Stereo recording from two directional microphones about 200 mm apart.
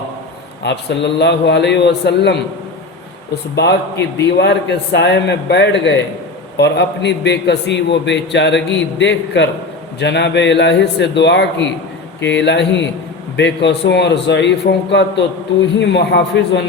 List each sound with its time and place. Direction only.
0.6 s a man's voice: 60° left (ahead or behind)
3.5 s a man's voice: 55° left (ahead or behind)